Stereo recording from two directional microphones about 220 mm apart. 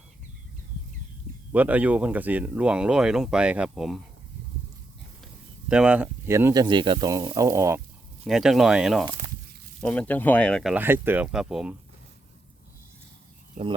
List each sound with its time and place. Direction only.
1.5 s speech: 5° right (ahead or behind)
5.6 s speech: 5° right (ahead or behind)
8.2 s speech: centre (ahead or behind)
13.6 s speech: 40° right (ahead or behind)